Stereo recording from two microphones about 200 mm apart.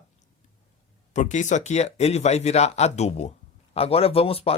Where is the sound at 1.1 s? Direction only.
35° left (ahead or behind).